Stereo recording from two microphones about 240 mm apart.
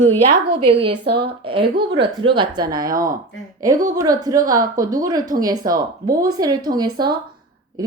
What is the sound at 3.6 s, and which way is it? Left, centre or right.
A woman's voice, centre.